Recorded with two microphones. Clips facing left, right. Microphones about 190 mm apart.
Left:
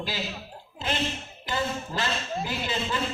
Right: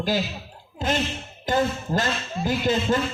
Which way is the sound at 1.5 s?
45° right (ahead or behind).